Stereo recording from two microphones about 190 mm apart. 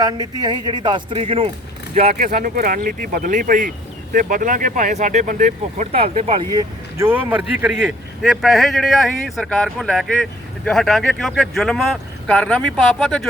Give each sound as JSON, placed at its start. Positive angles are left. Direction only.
{"t": 0.0, "sound": "speech", "side_deg": -20}
{"t": 2.1, "sound": "speech", "side_deg": -45}
{"t": 6.5, "sound": "speech", "side_deg": -20}